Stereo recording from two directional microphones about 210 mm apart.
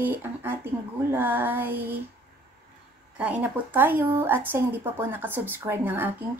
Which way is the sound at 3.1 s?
5° right (ahead or behind).